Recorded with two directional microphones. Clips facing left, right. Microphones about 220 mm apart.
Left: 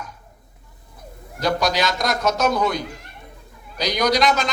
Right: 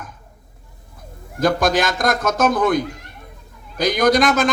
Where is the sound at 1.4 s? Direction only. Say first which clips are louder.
Right 4 dB; 50° right (ahead or behind).